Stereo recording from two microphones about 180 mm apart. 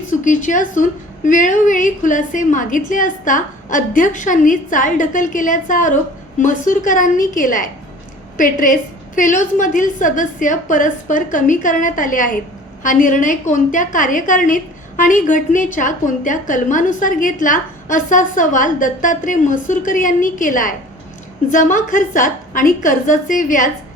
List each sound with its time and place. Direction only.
0.3 s a woman's voice: 45° left (ahead or behind)